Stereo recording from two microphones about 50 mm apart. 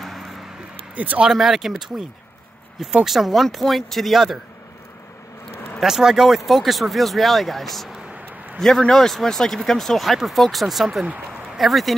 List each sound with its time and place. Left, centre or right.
0.0 s a sound: centre
0.9 s speech: right
1.3 s speech: centre
3.1 s speech: centre
5.8 s a man's voice: centre